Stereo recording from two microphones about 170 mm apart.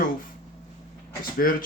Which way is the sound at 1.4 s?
60° left (ahead or behind).